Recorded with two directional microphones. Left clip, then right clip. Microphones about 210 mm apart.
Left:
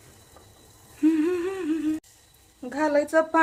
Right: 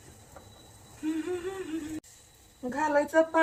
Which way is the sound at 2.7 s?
55° left (ahead or behind).